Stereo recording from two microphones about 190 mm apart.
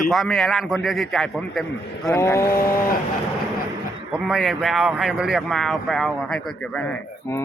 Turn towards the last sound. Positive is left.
turn(degrees=10)  # may be behind; listen again after turning